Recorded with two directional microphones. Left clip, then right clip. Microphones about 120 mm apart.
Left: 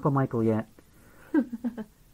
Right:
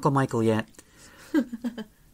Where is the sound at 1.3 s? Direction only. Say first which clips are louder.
Right 1 dB; 30° right (ahead or behind).